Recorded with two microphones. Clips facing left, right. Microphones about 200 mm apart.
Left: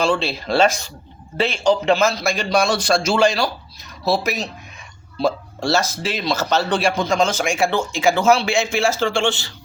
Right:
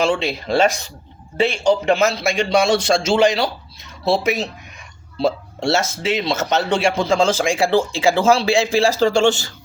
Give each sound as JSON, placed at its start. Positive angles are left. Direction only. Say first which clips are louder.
{"t": 0.0, "sound": "a man's voice", "louder": "right 1 dB", "side_deg": -20}